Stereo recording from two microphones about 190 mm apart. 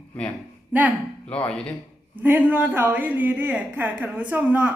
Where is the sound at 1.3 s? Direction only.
5° left (ahead or behind).